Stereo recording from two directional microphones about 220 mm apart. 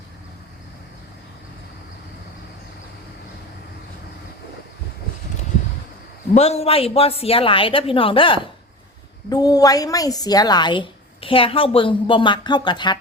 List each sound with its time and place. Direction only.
6.3 s a woman's voice: 30° left (ahead or behind)